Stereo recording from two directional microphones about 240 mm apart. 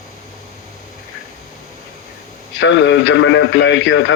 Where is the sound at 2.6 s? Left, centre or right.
Left.